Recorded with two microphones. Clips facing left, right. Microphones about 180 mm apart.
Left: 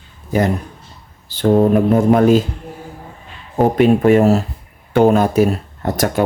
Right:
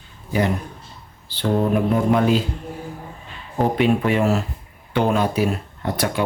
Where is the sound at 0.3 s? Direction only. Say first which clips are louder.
Left 4 dB; 45° left (ahead or behind).